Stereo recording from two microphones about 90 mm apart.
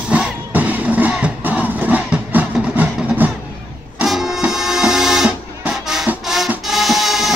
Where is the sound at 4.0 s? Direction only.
5° right (ahead or behind).